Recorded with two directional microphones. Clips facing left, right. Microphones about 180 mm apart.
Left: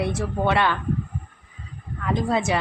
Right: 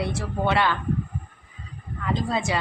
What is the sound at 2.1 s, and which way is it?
Speech, 20° left (ahead or behind).